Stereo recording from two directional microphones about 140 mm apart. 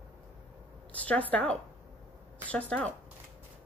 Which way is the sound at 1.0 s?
10° left (ahead or behind).